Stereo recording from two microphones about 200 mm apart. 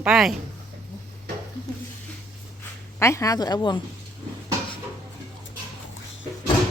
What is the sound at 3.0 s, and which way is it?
Speech, 15° left (ahead or behind).